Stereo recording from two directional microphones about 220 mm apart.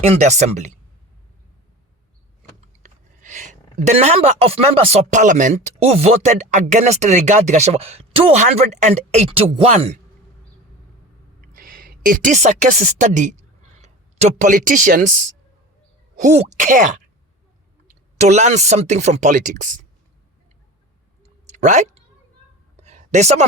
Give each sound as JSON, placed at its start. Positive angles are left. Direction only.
{"t": 0.0, "sound": "speech", "side_deg": -30}
{"t": 2.8, "sound": "speech", "side_deg": -35}
{"t": 11.3, "sound": "a woman's voice", "side_deg": -40}
{"t": 21.4, "sound": "a sound", "side_deg": -35}